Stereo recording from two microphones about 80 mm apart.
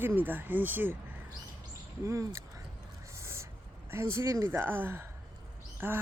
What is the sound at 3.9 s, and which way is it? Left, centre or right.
Speech, right.